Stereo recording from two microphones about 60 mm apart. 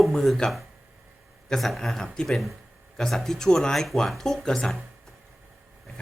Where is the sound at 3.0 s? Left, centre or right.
Centre.